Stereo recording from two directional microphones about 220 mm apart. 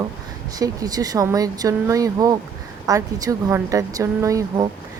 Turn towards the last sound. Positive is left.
turn(degrees=-15)  # may be behind; listen again after turning